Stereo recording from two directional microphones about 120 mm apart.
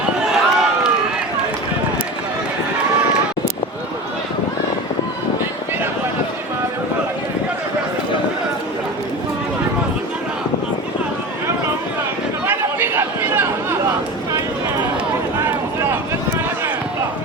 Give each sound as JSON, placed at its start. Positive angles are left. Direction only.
{"t": 0.3, "sound": "run", "side_deg": -5}
{"t": 12.5, "sound": "chatter", "side_deg": -20}
{"t": 15.4, "sound": "a sound", "side_deg": -15}